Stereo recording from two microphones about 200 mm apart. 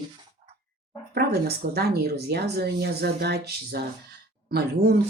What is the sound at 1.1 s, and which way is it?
Speech, 55° right (ahead or behind).